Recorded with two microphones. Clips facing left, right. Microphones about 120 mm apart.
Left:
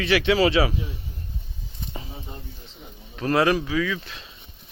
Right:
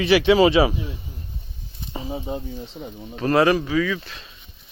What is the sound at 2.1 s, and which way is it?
Speech, 85° right.